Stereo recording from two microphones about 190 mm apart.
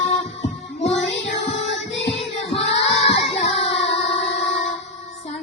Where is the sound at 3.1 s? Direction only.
30° left (ahead or behind).